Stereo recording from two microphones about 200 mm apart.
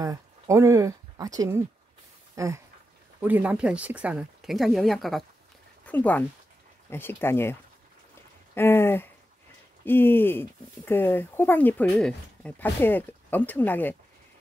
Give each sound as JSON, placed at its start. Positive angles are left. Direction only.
{"t": 0.0, "sound": "speech", "side_deg": -15}
{"t": 8.5, "sound": "speech", "side_deg": 10}